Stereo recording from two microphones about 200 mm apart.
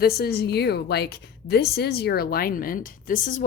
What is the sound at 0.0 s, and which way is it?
A woman's voice, 55° left (ahead or behind).